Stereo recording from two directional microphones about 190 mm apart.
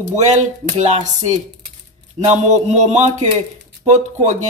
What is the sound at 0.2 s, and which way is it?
Speech, 40° right (ahead or behind).